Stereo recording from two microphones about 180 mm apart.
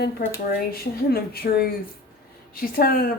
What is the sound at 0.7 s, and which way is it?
A woman's voice, 60° left (ahead or behind).